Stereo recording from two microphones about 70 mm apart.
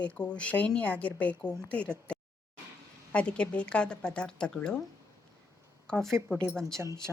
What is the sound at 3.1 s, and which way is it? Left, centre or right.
Speech, centre.